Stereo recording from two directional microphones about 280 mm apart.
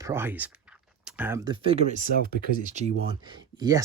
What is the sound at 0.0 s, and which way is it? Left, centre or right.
Speech, centre.